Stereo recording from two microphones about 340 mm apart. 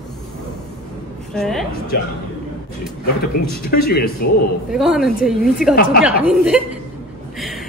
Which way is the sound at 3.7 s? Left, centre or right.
Left.